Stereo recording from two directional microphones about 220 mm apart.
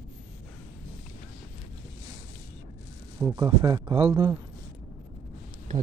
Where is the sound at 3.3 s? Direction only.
15° right (ahead or behind).